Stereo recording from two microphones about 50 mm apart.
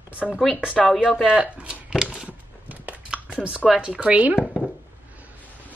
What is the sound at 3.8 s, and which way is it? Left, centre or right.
Speech, right.